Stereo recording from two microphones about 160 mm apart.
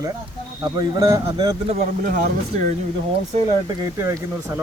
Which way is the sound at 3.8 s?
20° right (ahead or behind).